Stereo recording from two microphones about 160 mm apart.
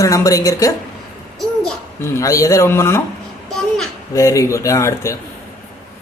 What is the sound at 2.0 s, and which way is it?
Speech, 20° left (ahead or behind).